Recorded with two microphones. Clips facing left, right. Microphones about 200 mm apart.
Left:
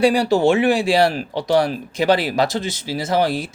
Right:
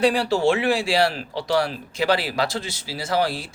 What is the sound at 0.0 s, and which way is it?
Speech, 15° left (ahead or behind).